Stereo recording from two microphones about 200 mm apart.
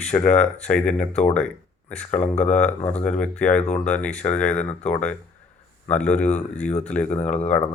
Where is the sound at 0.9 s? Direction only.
35° left (ahead or behind).